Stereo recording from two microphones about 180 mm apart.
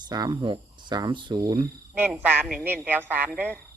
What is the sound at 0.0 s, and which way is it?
Speech, 25° right (ahead or behind).